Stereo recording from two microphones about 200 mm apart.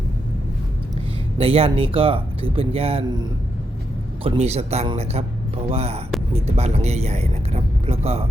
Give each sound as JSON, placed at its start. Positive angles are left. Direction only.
{"t": 1.4, "sound": "speech", "side_deg": -30}